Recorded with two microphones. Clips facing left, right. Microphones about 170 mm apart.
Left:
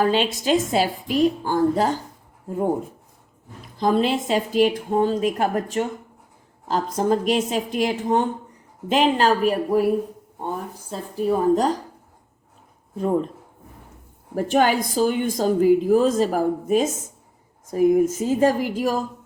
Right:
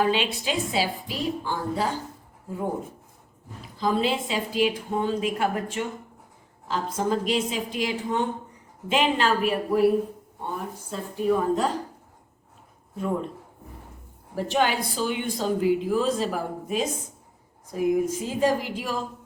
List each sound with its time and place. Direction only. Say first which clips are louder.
0.0 s speech: left 4 dB; 40° left (ahead or behind)
3.8 s a woman's voice: left 4 dB; 50° left (ahead or behind)
10.9 s a woman's voice: left 2 dB; 40° left (ahead or behind)
14.3 s speech: left 5 dB; 45° left (ahead or behind)